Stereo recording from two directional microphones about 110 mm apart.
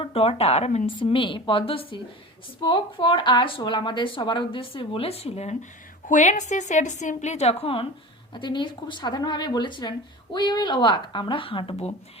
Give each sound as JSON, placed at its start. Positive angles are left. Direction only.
{"t": 0.0, "sound": "speech", "side_deg": 60}
{"t": 0.9, "sound": "speech", "side_deg": 50}
{"t": 2.6, "sound": "speech", "side_deg": 45}
{"t": 6.2, "sound": "a woman's voice", "side_deg": 90}
{"t": 8.3, "sound": "speech", "side_deg": 45}